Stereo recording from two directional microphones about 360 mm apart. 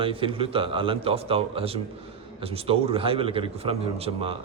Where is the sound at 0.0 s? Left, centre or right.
Centre.